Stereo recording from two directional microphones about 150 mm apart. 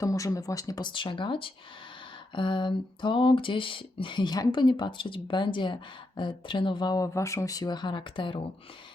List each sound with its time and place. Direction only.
0.0 s speech: 20° left (ahead or behind)